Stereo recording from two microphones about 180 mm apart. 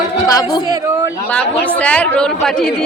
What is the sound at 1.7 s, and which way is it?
A woman's voice, 5° left (ahead or behind).